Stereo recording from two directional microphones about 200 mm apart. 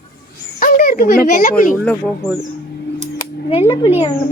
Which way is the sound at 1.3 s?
40° left (ahead or behind).